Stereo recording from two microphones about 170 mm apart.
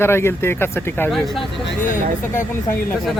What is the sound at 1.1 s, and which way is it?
Speech, centre (ahead or behind).